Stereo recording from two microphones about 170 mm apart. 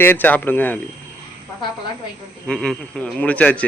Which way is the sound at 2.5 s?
5° left (ahead or behind).